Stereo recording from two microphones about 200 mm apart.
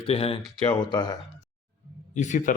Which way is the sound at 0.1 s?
30° left (ahead or behind).